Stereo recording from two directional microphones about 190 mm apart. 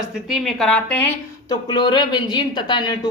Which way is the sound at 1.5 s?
25° left (ahead or behind).